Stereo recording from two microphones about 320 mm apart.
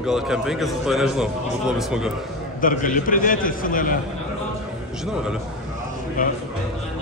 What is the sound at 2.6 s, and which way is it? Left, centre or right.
A man's voice, left.